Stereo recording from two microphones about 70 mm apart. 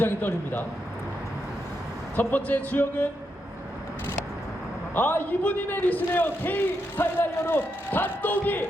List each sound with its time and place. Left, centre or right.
0.0 s a man's voice: left
2.1 s a man's voice: left
4.9 s a man's voice: left